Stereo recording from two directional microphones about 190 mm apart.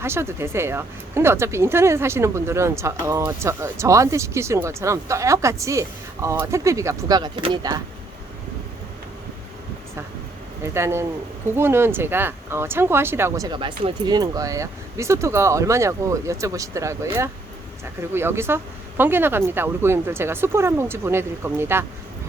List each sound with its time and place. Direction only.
0.0 s speech: 15° right (ahead or behind)
10.6 s speech: 15° right (ahead or behind)